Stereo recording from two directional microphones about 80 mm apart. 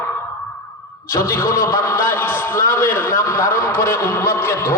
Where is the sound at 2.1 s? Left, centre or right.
Left.